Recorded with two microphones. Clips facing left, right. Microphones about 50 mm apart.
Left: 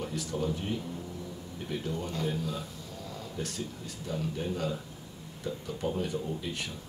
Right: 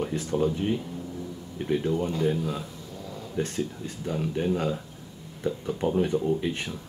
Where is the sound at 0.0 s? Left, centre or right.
Right.